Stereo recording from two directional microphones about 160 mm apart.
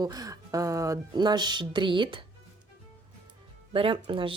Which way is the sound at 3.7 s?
35° right (ahead or behind).